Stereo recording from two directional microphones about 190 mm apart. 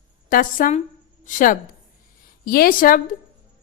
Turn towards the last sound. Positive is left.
turn(degrees=45)  # may be behind; listen again after turning